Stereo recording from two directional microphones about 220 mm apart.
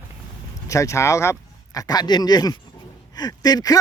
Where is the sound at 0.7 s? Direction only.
15° left (ahead or behind).